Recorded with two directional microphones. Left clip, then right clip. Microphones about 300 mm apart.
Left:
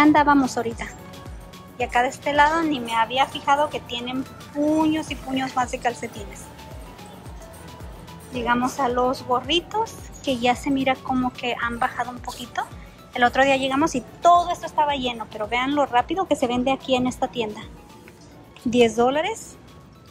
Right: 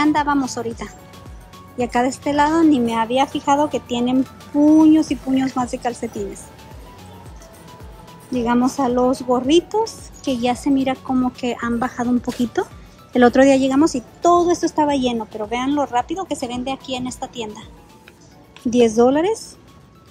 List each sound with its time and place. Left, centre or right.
0.0 s speech: centre
8.3 s speech: centre
13.2 s a woman's voice: right
18.7 s speech: centre